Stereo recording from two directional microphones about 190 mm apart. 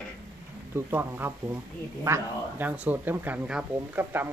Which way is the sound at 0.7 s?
10° right (ahead or behind).